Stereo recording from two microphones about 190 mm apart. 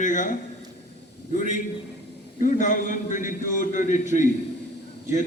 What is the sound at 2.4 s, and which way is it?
A man's voice, 40° left (ahead or behind).